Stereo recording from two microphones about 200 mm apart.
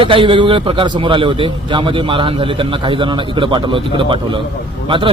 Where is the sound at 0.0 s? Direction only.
25° right (ahead or behind).